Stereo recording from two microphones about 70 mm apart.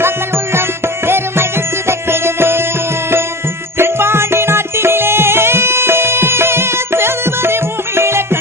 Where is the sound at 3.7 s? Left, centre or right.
Right.